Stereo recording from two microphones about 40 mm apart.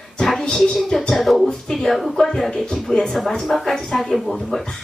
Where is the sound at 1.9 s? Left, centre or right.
Centre.